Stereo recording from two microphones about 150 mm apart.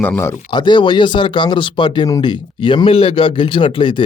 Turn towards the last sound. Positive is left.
turn(degrees=35)  # may be behind; listen again after turning